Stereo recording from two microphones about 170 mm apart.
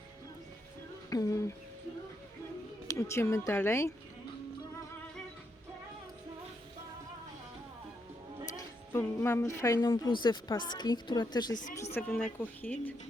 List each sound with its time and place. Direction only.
1.1 s a woman's voice: 20° left (ahead or behind)
2.8 s speech: 15° left (ahead or behind)
8.5 s a woman's voice: 15° left (ahead or behind)
11.5 s a woman's voice: 50° left (ahead or behind)
11.9 s speech: 10° left (ahead or behind)